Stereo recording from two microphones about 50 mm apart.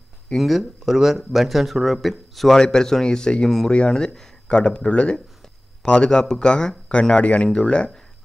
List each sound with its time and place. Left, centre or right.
0.4 s speech: centre
2.6 s speech: centre